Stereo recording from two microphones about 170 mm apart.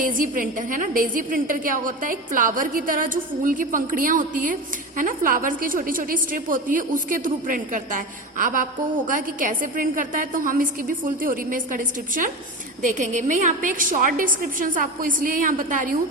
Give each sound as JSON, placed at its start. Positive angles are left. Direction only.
{"t": 0.0, "sound": "a woman's voice", "side_deg": -50}